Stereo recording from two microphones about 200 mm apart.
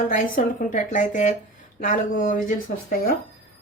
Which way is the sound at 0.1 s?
40° left (ahead or behind).